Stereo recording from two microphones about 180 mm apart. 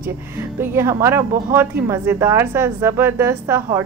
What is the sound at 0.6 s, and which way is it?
A woman's voice, 15° right (ahead or behind).